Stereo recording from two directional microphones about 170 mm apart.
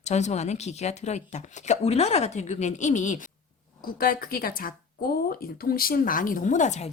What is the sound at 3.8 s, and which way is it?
A woman's voice, 60° left (ahead or behind).